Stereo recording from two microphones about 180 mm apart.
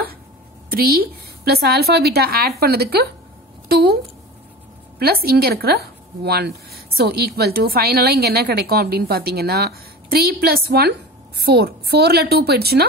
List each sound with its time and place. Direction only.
0.7 s a woman's voice: 55° right (ahead or behind)